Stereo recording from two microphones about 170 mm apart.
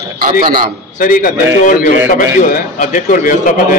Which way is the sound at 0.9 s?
55° left (ahead or behind).